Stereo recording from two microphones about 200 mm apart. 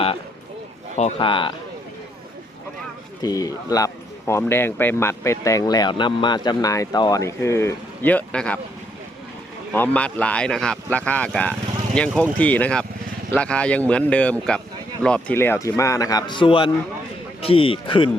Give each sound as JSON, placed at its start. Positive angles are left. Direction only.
{"t": 0.9, "sound": "a man's voice", "side_deg": 30}
{"t": 3.2, "sound": "speech", "side_deg": 15}
{"t": 9.7, "sound": "a man's voice", "side_deg": 10}